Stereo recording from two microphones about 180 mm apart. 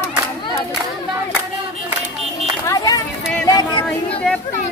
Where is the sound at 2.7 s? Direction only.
20° left (ahead or behind).